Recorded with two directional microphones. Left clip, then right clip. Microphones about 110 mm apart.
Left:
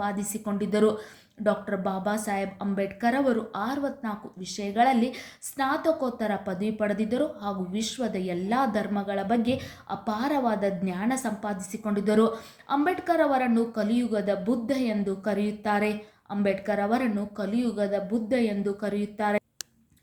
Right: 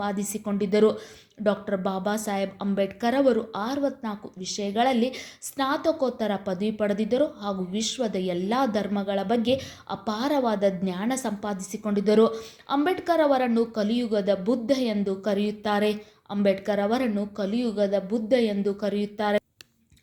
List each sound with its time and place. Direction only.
0.0 s a woman's voice: 30° right (ahead or behind)